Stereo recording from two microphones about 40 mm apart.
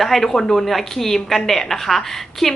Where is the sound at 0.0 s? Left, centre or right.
Centre.